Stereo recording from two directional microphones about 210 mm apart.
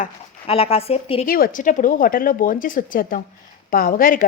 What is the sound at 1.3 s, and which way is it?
A woman's voice, 40° left (ahead or behind).